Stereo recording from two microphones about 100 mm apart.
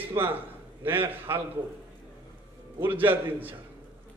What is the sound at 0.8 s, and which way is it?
Speech, 20° right (ahead or behind).